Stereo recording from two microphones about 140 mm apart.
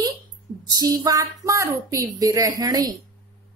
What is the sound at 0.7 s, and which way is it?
A woman's voice, 25° right (ahead or behind).